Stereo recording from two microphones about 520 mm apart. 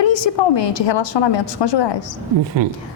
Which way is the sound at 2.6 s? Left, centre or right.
Right.